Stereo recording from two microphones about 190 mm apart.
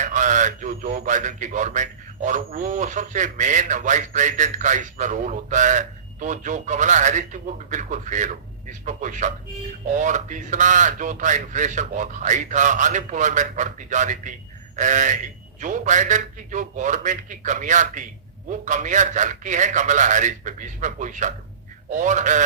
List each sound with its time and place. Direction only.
0.0 s a man's voice: 40° right (ahead or behind)